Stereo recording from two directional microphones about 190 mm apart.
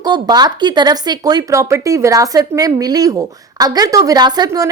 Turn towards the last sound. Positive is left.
turn(degrees=-20)  # may be behind; listen again after turning